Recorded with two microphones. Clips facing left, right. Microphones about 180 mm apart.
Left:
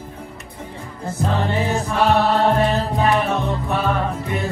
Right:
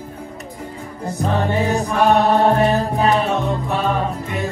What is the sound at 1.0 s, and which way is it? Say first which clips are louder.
Music: right 2 dB; 15° right (ahead or behind).